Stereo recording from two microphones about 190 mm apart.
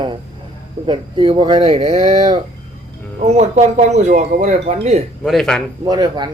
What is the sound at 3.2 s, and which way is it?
Speech, 35° right (ahead or behind).